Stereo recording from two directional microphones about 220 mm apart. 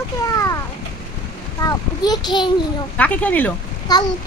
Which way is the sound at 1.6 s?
15° left (ahead or behind).